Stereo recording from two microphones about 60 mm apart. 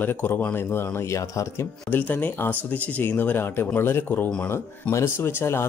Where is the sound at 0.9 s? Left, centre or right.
Left.